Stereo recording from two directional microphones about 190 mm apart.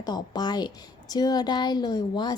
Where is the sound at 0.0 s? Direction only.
20° left (ahead or behind).